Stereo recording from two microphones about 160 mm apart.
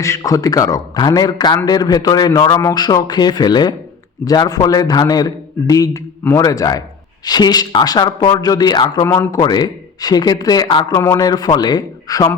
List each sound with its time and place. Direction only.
0.0 s a man's voice: 20° left (ahead or behind)